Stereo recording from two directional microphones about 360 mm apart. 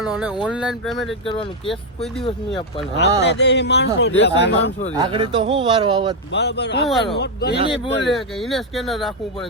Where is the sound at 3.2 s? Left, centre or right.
Left.